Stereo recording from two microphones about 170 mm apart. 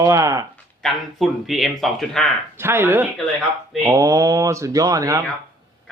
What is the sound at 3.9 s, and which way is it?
Speech, 20° right (ahead or behind).